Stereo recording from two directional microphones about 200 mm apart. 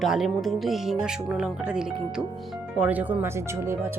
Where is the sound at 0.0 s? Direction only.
Centre (ahead or behind).